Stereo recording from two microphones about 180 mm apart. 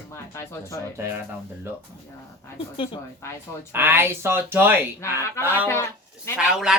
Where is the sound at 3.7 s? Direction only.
10° right (ahead or behind).